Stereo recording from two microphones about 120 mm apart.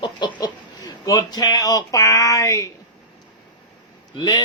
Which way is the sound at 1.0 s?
30° left (ahead or behind).